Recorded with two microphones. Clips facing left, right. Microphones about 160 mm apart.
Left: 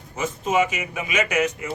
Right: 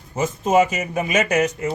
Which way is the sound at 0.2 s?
40° right (ahead or behind).